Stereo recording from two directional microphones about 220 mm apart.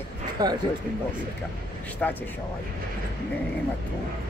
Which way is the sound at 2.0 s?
5° left (ahead or behind).